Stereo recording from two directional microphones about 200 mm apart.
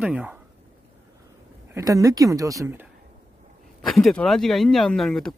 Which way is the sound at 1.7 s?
15° right (ahead or behind).